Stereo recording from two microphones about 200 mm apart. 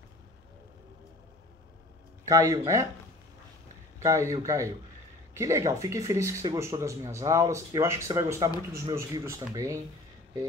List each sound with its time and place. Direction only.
2.2 s speech: 15° right (ahead or behind)
4.0 s speech: 15° right (ahead or behind)